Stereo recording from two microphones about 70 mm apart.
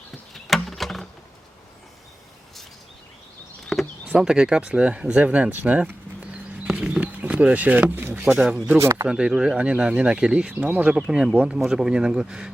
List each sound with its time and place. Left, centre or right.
0.3 s a sound: centre
4.0 s speech: centre
6.7 s a sound: centre
8.2 s speech: centre
8.8 s speech: right
9.0 s speech: centre
11.0 s speech: centre